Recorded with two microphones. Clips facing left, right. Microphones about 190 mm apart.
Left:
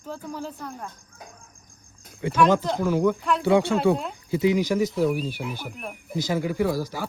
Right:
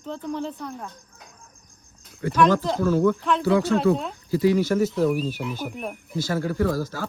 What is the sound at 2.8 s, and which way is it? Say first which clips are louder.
Speech: right 3 dB; 15° left (ahead or behind).